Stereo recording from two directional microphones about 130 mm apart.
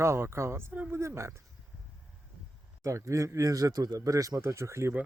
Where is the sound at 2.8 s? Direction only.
25° right (ahead or behind).